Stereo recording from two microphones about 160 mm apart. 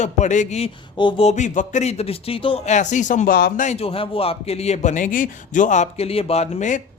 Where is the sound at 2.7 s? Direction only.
50° left (ahead or behind); by 3.6 s 70° left (ahead or behind).